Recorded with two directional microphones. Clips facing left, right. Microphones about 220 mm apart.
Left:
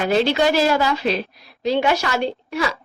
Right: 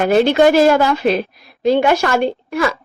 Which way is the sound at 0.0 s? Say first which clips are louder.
Right 6 dB; 55° right (ahead or behind).